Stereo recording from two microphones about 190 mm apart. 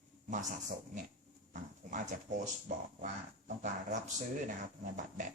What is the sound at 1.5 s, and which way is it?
Speech, 40° right (ahead or behind).